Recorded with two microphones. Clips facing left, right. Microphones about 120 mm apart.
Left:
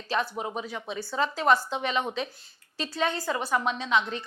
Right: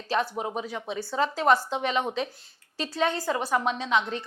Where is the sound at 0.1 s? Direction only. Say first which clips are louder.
Right 2 dB; 50° right (ahead or behind).